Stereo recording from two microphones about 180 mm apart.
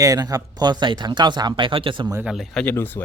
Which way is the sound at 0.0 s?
20° right (ahead or behind).